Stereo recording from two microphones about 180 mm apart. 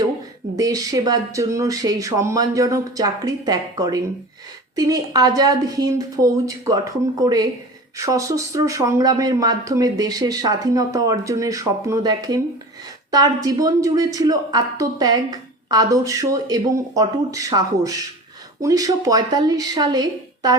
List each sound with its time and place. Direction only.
0.5 s speech: 20° right (ahead or behind)